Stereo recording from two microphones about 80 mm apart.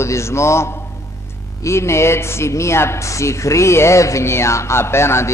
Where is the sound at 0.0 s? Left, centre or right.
Left.